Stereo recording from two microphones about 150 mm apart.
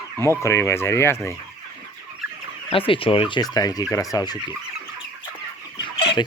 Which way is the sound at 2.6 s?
35° left (ahead or behind).